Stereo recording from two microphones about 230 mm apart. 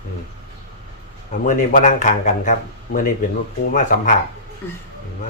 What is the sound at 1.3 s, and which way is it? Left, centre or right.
Speech, left.